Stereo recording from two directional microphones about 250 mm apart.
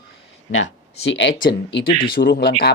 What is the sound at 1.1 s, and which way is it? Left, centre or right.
Speech, left.